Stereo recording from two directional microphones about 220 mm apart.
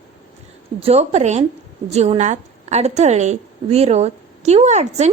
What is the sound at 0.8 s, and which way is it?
A woman's voice, 25° right (ahead or behind).